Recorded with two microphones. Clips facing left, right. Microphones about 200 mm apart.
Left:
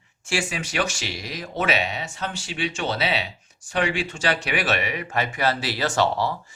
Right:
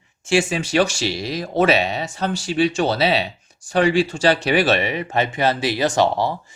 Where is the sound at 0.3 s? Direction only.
25° right (ahead or behind).